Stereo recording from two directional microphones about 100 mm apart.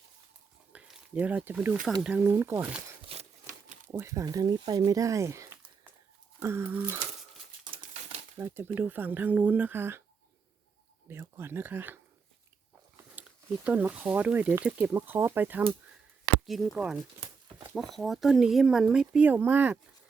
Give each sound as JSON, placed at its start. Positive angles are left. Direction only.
{"t": 0.7, "sound": "a sound", "side_deg": -10}
{"t": 1.8, "sound": "speech", "side_deg": -5}
{"t": 2.1, "sound": "speech", "side_deg": -20}
{"t": 3.1, "sound": "a sound", "side_deg": -80}
{"t": 3.9, "sound": "speech", "side_deg": -35}
{"t": 8.4, "sound": "speech", "side_deg": -25}
{"t": 11.1, "sound": "speech", "side_deg": -25}
{"t": 13.2, "sound": "a sound", "side_deg": -20}
{"t": 13.7, "sound": "speech", "side_deg": -15}
{"t": 16.5, "sound": "speech", "side_deg": 0}
{"t": 17.2, "sound": "a sound", "side_deg": -35}
{"t": 17.8, "sound": "speech", "side_deg": 0}